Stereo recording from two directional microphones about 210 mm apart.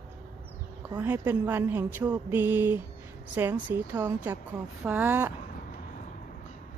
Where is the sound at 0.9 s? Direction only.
10° right (ahead or behind).